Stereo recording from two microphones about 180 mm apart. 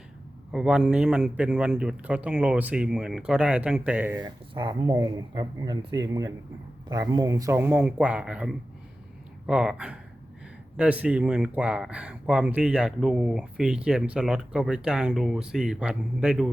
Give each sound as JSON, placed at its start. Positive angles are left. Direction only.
{"t": 0.5, "sound": "speech", "side_deg": -5}
{"t": 4.2, "sound": "speech", "side_deg": -25}
{"t": 4.9, "sound": "speech", "side_deg": -15}